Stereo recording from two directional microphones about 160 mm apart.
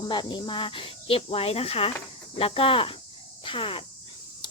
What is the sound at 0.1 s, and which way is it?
Speech, 30° left (ahead or behind).